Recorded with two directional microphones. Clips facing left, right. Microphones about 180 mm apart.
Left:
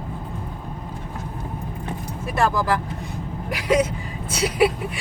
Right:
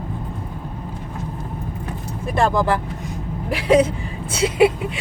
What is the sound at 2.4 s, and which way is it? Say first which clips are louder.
Speech: right 3 dB; 30° right (ahead or behind).